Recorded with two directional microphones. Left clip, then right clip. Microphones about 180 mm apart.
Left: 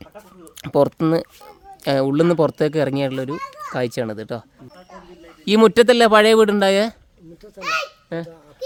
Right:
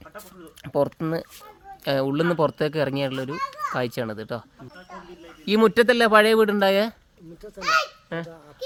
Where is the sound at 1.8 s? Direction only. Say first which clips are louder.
Left 5 dB; 45° left (ahead or behind).